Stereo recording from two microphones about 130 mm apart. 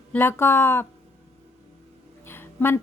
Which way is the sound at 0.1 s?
15° left (ahead or behind).